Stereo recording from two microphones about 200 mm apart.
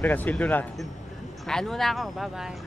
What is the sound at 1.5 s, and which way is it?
Speech, centre (ahead or behind).